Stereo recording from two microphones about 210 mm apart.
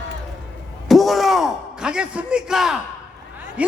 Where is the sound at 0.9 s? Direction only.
Centre (ahead or behind).